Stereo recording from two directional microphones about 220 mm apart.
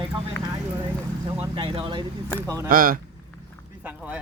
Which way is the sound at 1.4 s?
25° right (ahead or behind).